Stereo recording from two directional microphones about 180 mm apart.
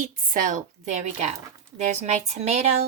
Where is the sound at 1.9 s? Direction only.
40° right (ahead or behind).